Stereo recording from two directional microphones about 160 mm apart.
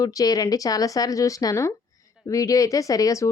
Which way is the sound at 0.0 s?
20° left (ahead or behind).